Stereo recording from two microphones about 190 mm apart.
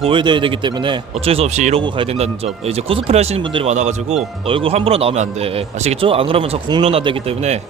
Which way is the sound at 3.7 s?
35° right (ahead or behind).